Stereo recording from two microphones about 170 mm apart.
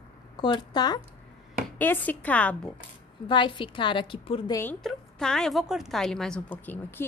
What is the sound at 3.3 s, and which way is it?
Speech, 30° left (ahead or behind).